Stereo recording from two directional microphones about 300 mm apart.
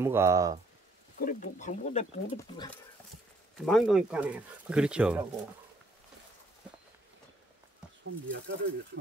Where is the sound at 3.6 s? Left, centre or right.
Centre.